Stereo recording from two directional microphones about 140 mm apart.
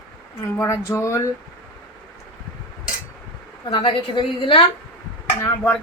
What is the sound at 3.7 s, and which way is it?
Speech, 35° left (ahead or behind).